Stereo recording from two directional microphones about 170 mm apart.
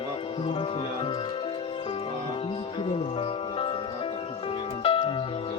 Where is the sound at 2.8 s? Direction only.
35° left (ahead or behind).